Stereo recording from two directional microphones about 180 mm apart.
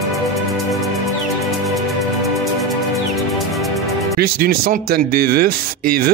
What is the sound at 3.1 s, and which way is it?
Music, centre (ahead or behind).